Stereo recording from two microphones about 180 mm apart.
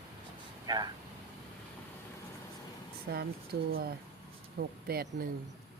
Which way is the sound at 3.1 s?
60° right (ahead or behind).